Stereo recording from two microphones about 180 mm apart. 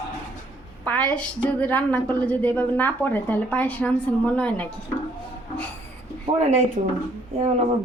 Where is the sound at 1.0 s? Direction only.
5° left (ahead or behind).